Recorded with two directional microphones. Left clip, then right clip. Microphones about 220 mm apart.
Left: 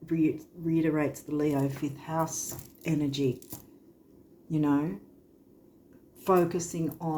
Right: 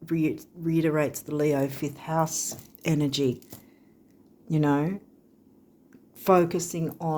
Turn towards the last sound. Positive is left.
turn(degrees=-50)  # may be behind; listen again after turning